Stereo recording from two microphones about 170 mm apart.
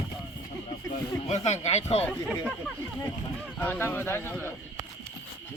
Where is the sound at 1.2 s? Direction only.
40° left (ahead or behind).